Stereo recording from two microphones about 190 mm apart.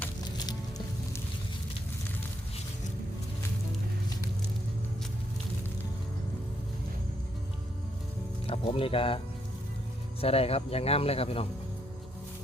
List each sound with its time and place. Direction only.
8.4 s speech: 30° left (ahead or behind)